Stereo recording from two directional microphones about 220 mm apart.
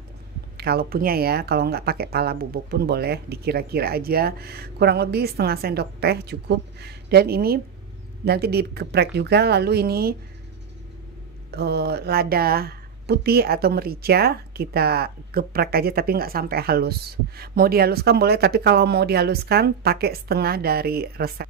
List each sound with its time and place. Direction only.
0.6 s speech: 45° right (ahead or behind)
11.5 s speech: 45° right (ahead or behind)